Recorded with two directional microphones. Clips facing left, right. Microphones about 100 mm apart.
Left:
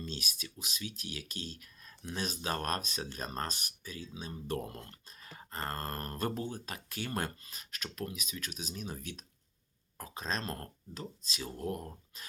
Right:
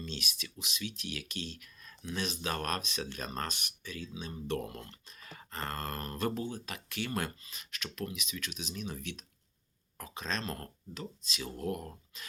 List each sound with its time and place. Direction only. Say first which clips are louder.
0.0 s speech: even; 40° left (ahead or behind)